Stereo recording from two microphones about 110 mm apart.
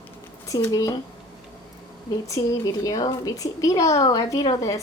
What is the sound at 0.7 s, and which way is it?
Speech, 30° left (ahead or behind).